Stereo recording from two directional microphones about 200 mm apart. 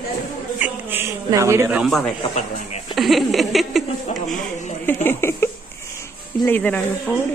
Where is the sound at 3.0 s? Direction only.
Centre (ahead or behind).